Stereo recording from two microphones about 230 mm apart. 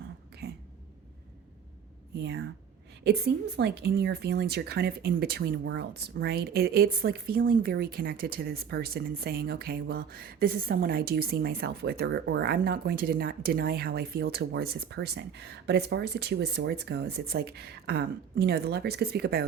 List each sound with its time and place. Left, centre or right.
2.1 s speech: right